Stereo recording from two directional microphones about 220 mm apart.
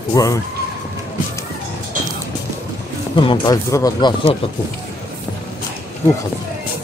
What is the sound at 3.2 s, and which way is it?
Speech, 20° left (ahead or behind).